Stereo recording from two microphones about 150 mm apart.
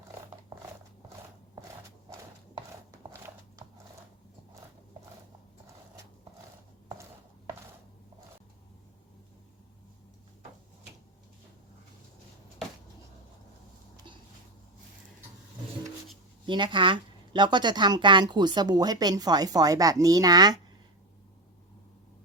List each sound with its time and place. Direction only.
16.5 s speech: 30° right (ahead or behind)